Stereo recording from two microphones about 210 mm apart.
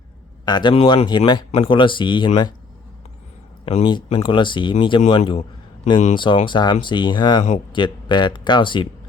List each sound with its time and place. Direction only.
0.4 s speech: 20° left (ahead or behind)
3.7 s speech: 25° left (ahead or behind)